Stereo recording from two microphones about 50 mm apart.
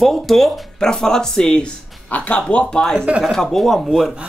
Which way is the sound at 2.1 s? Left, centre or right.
Left.